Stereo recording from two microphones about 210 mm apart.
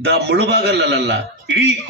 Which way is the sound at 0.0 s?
55° right (ahead or behind).